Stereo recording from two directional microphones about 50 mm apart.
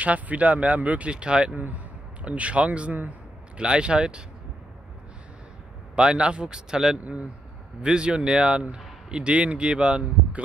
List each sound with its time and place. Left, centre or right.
0.0 s speech: right
5.9 s speech: centre